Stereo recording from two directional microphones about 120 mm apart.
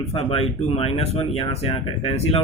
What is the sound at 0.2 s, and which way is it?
Speech, 55° left (ahead or behind).